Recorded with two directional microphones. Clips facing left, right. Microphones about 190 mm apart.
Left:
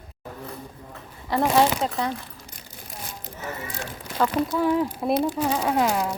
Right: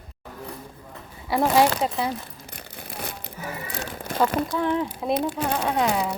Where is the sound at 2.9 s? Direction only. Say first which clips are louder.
Right 5 dB; 65° right (ahead or behind).